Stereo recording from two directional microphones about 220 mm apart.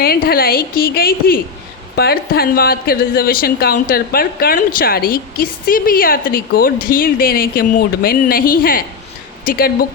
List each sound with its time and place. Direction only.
0.0 s a woman's voice: 45° left (ahead or behind)